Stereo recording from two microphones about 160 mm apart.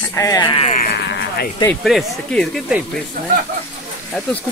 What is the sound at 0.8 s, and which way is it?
Speech, 90° left.